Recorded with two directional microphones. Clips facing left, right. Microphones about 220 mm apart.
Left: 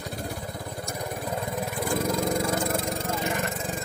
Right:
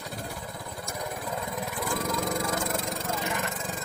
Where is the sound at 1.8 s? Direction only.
30° left (ahead or behind).